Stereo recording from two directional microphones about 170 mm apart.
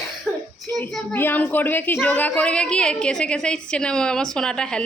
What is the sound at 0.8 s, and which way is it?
Speech, 5° left (ahead or behind).